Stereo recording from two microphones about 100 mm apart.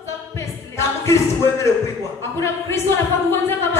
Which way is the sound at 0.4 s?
30° left (ahead or behind).